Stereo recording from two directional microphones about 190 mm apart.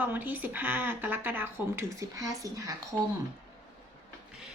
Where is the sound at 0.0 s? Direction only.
10° right (ahead or behind).